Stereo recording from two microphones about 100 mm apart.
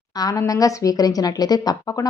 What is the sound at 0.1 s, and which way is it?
A woman's voice, 40° left (ahead or behind).